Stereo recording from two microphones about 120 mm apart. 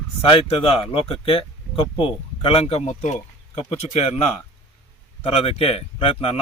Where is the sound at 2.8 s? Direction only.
75° left (ahead or behind); by 4.2 s 60° left (ahead or behind).